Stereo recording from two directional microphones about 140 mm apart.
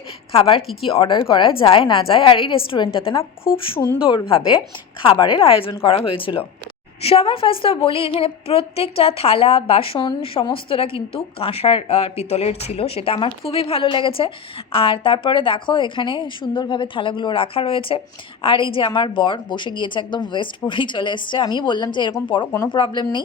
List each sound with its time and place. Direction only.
0.3 s speech: 40° left (ahead or behind)